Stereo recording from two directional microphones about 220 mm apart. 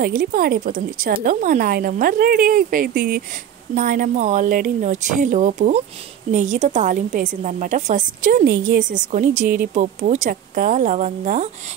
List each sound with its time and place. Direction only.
0.0 s a woman's voice: 40° right (ahead or behind)